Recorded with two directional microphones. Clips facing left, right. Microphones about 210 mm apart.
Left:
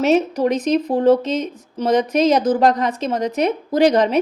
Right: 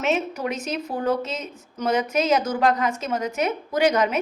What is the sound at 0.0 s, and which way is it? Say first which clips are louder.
A woman's voice: left 8 dB; 35° left (ahead or behind).